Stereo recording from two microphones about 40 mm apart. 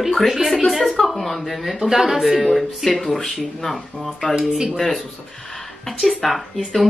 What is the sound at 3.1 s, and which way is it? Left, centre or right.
Speech, centre.